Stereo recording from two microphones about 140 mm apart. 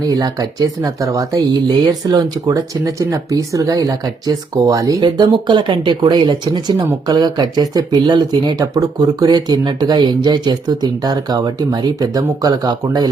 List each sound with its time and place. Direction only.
0.0 s speech: 25° right (ahead or behind)